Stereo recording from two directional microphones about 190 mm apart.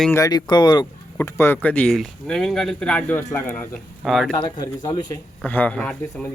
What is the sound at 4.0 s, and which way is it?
Speech, centre (ahead or behind).